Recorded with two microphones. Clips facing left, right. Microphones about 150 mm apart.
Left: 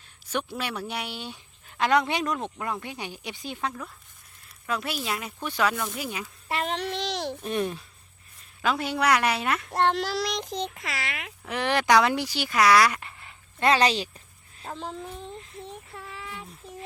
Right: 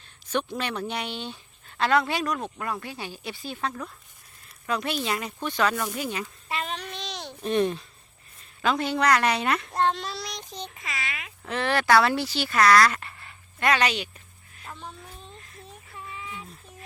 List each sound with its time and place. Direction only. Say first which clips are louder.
0.3 s speech: right 2 dB; 10° left (ahead or behind)
6.5 s babbling: left 5 dB; 65° left (ahead or behind)
7.4 s speech: right 8 dB; 5° left (ahead or behind)
9.7 s a child's voice: left 2 dB; 70° left (ahead or behind)
11.4 s speech: even; 15° left (ahead or behind)
13.6 s speech: left 2 dB; 30° left (ahead or behind)
14.7 s speech: left 6 dB; 45° left (ahead or behind)
15.3 s a sound: left 7 dB; 20° left (ahead or behind)
16.0 s a sound: right 4 dB; 80° left